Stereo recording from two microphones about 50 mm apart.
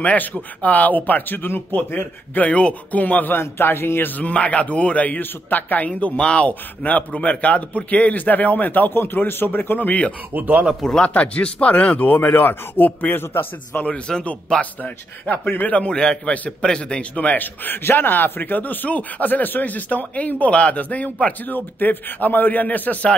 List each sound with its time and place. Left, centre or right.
0.0 s a man's voice: left
3.3 s a man's voice: left
4.2 s a man's voice: left
5.9 s a man's voice: left
10.3 s a man's voice: right
11.0 s a man's voice: left
11.9 s a man's voice: left
13.8 s a man's voice: left
14.6 s a man's voice: left